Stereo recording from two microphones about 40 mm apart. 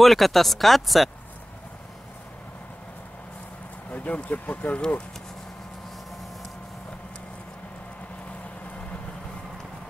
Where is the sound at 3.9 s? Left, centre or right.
Left.